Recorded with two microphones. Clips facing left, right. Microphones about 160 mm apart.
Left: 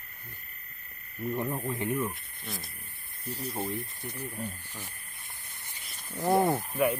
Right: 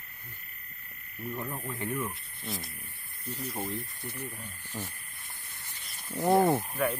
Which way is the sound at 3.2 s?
30° left (ahead or behind).